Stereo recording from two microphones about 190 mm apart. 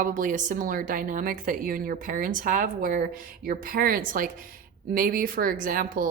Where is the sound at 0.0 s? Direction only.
45° right (ahead or behind).